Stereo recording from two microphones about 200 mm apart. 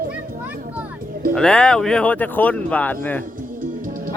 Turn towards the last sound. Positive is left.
turn(degrees=5)  # may be behind; listen again after turning